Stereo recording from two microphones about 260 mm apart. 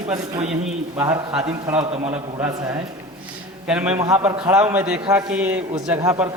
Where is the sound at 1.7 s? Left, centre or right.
Right.